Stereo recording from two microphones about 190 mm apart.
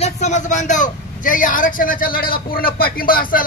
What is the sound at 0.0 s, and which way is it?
Speech, 40° left (ahead or behind).